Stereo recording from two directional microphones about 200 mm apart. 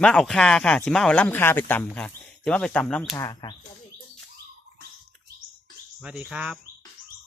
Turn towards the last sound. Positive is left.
turn(degrees=-5)  # may be behind; listen again after turning